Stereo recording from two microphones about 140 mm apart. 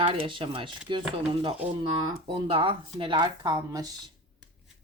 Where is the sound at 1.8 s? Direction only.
35° right (ahead or behind).